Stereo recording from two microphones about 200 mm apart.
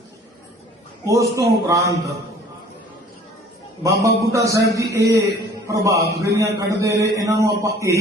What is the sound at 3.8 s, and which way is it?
A man's voice, 15° right (ahead or behind).